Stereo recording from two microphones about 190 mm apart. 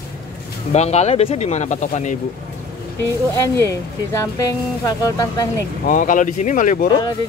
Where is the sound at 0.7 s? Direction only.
35° left (ahead or behind).